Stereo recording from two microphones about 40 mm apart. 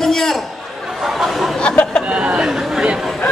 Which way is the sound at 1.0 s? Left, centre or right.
Centre.